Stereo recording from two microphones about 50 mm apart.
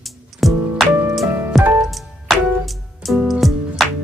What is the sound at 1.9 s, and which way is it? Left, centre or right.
Music, centre.